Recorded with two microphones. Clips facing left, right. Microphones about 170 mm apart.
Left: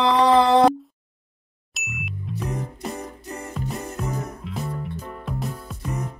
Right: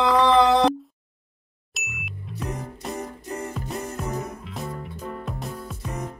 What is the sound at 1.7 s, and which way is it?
Ding, centre (ahead or behind).